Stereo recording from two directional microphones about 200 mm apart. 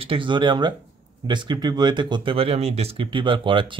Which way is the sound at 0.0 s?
25° right (ahead or behind).